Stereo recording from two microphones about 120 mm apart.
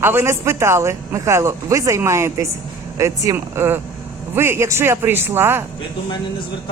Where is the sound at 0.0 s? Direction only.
20° right (ahead or behind).